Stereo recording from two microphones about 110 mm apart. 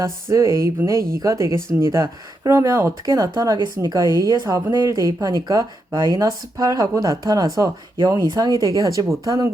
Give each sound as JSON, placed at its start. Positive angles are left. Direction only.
{"t": 0.0, "sound": "speech", "side_deg": -30}